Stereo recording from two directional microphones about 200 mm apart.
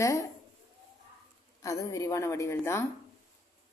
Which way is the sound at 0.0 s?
15° left (ahead or behind).